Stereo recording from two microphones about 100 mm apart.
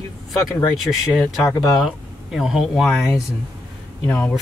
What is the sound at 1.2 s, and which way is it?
Speech, 30° left (ahead or behind).